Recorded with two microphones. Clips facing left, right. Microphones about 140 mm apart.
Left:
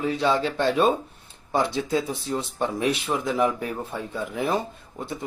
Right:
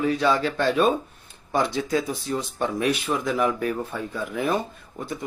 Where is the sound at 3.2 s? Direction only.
20° left (ahead or behind).